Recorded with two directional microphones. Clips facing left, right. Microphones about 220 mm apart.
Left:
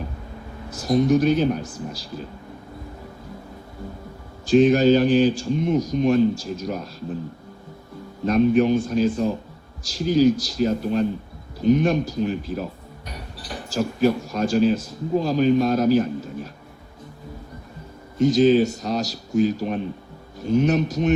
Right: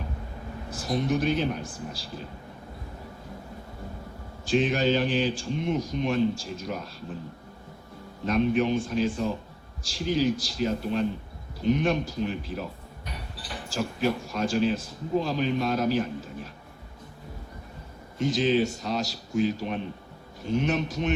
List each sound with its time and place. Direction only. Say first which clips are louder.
0.7 s speech: left 8 dB; 40° left (ahead or behind)
4.4 s speech: left 9 dB; 40° left (ahead or behind)
8.3 s speech: left 6 dB; 40° left (ahead or behind)
18.2 s speech: left 8 dB; 40° left (ahead or behind)